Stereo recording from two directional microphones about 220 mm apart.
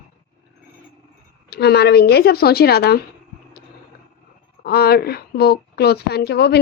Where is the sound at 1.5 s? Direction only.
45° left (ahead or behind).